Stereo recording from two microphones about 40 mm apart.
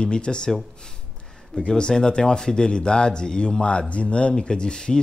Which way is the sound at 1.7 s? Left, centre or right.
Centre.